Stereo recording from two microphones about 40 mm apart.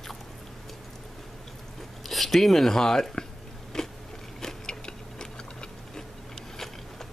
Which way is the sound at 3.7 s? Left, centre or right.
Centre.